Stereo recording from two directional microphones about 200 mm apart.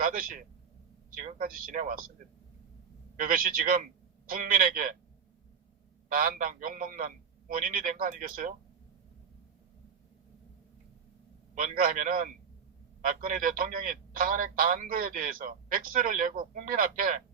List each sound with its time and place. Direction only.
0.0 s a man's voice: 45° right (ahead or behind)
3.2 s a man's voice: 45° right (ahead or behind)
6.1 s a man's voice: 45° right (ahead or behind)
11.5 s a man's voice: 45° right (ahead or behind)